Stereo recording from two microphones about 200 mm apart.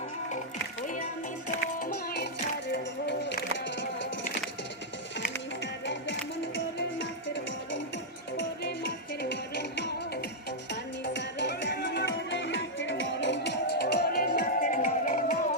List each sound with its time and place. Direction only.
1.5 s music: 50° left (ahead or behind)
5.8 s music: 65° left (ahead or behind); by 15.4 s 40° left (ahead or behind)